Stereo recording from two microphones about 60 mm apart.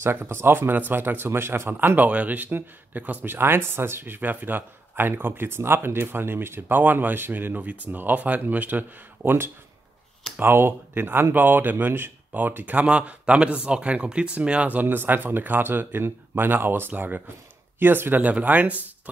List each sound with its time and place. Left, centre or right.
0.0 s speech: right
12.8 s a man's voice: centre
14.8 s speech: right